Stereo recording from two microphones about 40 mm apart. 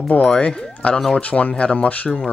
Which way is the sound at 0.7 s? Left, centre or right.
Left.